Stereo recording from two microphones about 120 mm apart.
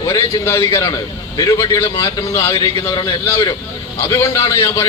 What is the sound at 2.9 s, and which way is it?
Speech, 35° left (ahead or behind).